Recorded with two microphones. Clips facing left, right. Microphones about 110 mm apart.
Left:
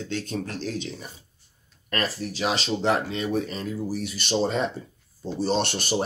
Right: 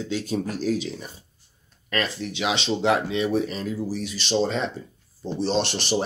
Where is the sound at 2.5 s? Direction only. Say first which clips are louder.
Right 2 dB; 35° left (ahead or behind).